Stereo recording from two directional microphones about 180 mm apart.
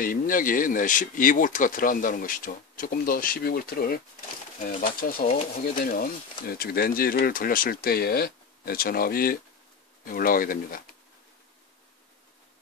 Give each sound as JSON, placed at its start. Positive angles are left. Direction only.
{"t": 0.0, "sound": "speech", "side_deg": 50}